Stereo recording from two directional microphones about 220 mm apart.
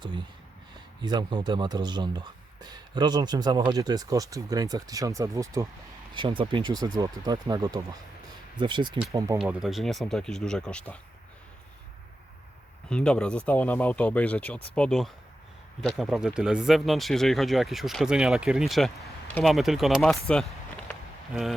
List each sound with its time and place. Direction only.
1.0 s speech: 20° right (ahead or behind)
9.4 s speech: centre (ahead or behind)
12.9 s speech: 5° left (ahead or behind)